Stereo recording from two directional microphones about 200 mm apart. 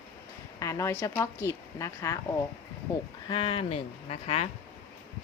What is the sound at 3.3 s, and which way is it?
Speech, 25° left (ahead or behind).